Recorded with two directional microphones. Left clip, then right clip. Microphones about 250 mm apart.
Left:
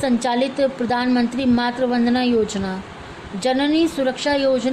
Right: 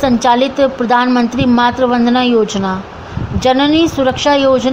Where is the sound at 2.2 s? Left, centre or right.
Left.